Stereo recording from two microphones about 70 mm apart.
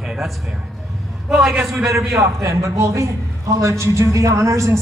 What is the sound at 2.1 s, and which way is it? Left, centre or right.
A man's voice, right.